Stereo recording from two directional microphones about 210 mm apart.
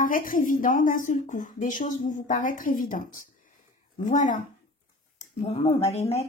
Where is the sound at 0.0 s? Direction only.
40° left (ahead or behind).